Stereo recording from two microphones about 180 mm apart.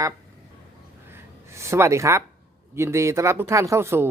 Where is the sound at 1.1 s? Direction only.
15° right (ahead or behind).